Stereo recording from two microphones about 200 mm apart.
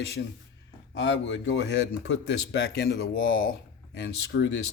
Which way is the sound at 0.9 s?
65° left (ahead or behind).